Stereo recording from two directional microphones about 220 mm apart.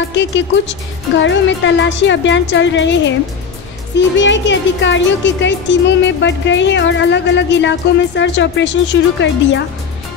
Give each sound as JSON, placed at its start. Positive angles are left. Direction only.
{"t": 0.1, "sound": "speech", "side_deg": 55}